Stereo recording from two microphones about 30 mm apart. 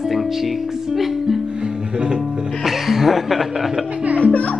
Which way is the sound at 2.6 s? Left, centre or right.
Centre.